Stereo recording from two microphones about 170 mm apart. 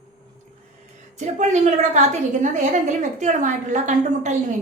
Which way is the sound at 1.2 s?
45° right (ahead or behind).